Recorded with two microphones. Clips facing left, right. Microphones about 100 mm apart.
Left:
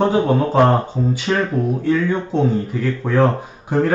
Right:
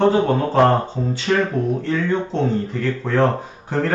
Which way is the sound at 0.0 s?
15° left (ahead or behind).